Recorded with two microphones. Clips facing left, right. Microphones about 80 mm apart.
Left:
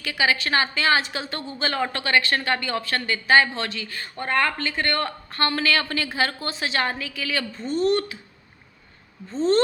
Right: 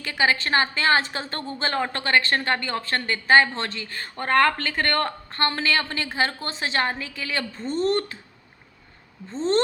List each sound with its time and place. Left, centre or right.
0.0 s a woman's voice: right
5.3 s a woman's voice: right
9.3 s a woman's voice: right